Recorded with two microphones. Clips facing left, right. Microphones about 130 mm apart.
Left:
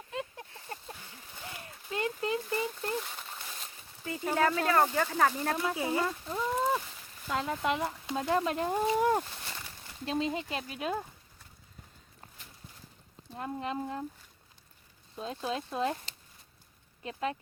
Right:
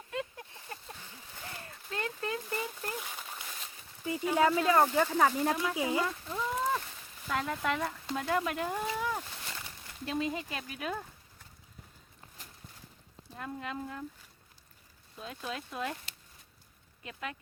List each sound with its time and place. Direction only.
0.1 s a sound: 25° left (ahead or behind)
2.9 s a sound: 5° right (ahead or behind)
4.4 s speech: 15° right (ahead or behind)
6.1 s speech: 20° left (ahead or behind)
6.4 s a sound: 5° left (ahead or behind)
7.3 s speech: 20° left (ahead or behind)
9.0 s speech: 45° left (ahead or behind)
10.1 s speech: 25° left (ahead or behind)
13.3 s speech: 30° left (ahead or behind)
15.1 s speech: 25° left (ahead or behind)